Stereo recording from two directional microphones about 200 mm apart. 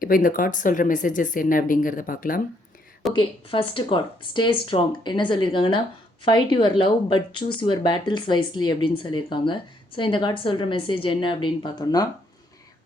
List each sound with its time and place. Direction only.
0.0 s speech: 45° left (ahead or behind)
3.1 s a woman's voice: 25° left (ahead or behind)